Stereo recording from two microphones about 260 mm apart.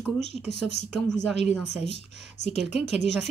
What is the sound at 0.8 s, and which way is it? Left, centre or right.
Speech, left.